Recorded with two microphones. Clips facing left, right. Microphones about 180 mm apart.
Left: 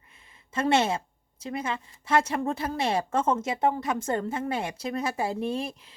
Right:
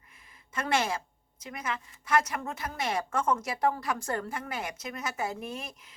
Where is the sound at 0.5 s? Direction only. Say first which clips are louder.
Left 5 dB; 25° left (ahead or behind).